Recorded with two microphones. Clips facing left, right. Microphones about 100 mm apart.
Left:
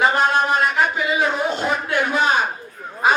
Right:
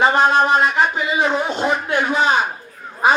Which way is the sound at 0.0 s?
20° right (ahead or behind).